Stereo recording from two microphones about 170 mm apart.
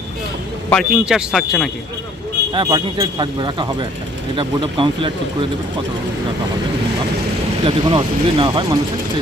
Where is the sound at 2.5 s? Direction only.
25° right (ahead or behind).